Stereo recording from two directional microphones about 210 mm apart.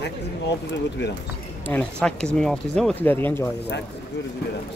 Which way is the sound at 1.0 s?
55° left (ahead or behind).